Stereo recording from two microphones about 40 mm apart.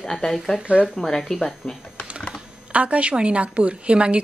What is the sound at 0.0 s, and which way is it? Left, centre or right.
Speech, centre.